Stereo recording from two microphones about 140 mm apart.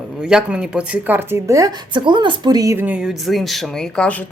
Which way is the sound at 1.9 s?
35° right (ahead or behind).